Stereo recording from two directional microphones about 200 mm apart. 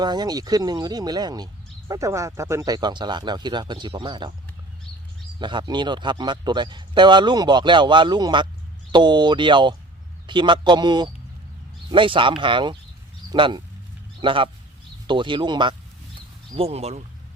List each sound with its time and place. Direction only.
0.0 s a man's voice: 20° right (ahead or behind)
5.4 s a man's voice: 25° right (ahead or behind)